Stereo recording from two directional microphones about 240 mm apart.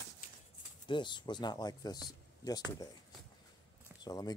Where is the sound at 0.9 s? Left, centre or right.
Centre.